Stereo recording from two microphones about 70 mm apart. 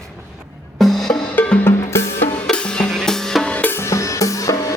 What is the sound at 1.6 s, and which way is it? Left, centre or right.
Music, left.